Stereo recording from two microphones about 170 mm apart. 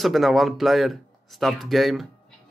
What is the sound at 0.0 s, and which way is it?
A man's voice, centre (ahead or behind).